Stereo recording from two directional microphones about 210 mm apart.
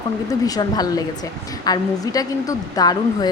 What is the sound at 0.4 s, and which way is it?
A woman's voice, 20° left (ahead or behind).